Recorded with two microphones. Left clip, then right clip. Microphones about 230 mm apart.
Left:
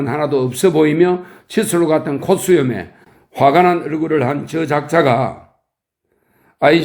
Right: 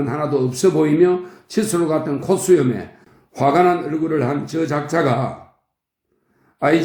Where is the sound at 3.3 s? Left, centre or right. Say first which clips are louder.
Left 5 dB; left.